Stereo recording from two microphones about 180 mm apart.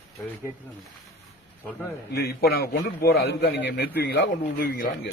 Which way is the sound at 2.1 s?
65° left (ahead or behind).